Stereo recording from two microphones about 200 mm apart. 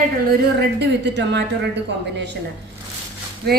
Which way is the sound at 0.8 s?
60° right (ahead or behind).